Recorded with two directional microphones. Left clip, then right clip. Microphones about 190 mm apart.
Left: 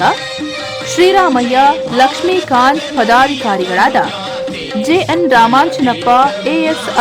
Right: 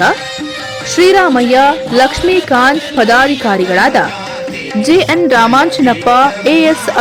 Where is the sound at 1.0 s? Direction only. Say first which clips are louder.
Right 2 dB; 15° right (ahead or behind).